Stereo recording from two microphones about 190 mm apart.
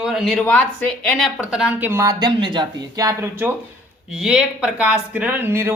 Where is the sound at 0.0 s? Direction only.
Centre (ahead or behind).